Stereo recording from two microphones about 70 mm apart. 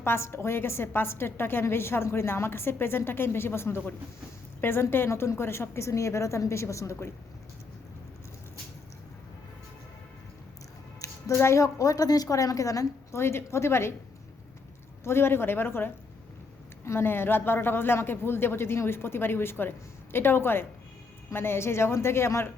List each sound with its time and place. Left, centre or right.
0.0 s a woman's voice: left
11.0 s music: left
11.3 s a woman's voice: left
13.1 s a woman's voice: left
15.0 s a woman's voice: left